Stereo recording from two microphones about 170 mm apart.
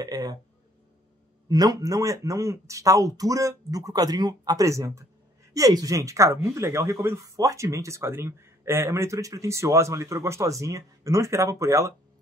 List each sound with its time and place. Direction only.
0.0 s speech: 20° right (ahead or behind)
1.5 s speech: 20° right (ahead or behind)